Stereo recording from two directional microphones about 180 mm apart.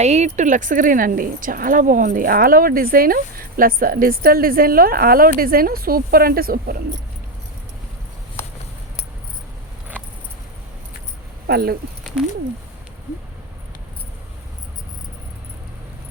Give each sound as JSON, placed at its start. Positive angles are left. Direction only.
{"t": 0.0, "sound": "a woman's voice", "side_deg": -40}
{"t": 11.4, "sound": "speech", "side_deg": -60}